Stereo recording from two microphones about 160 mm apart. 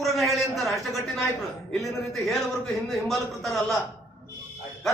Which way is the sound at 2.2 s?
Centre (ahead or behind).